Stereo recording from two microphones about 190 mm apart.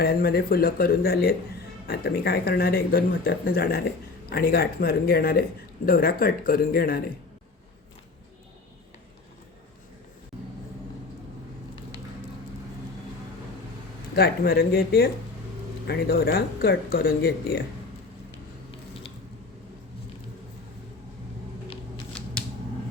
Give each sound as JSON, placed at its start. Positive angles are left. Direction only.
{"t": 0.0, "sound": "speech", "side_deg": 50}
{"t": 14.2, "sound": "speech", "side_deg": 55}